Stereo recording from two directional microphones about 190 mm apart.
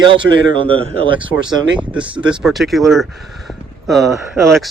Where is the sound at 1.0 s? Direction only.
25° right (ahead or behind).